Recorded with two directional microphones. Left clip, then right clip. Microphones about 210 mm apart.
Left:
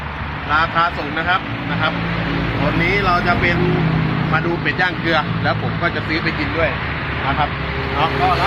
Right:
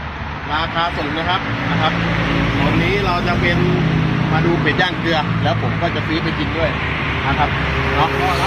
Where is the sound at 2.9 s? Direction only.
Centre (ahead or behind).